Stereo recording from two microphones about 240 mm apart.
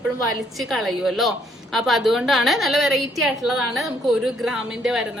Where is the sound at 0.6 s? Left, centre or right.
Centre.